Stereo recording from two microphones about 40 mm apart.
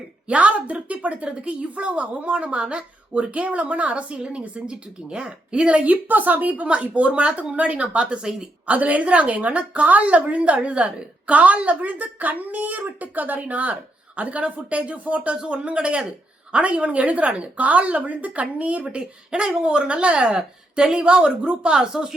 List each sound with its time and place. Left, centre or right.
0.3 s a woman's voice: right
6.7 s a woman's voice: right
8.6 s a woman's voice: right
18.9 s speech: right
21.8 s speech: centre